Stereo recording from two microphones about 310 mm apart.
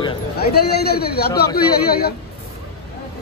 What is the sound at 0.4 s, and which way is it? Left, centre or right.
A man's voice, left.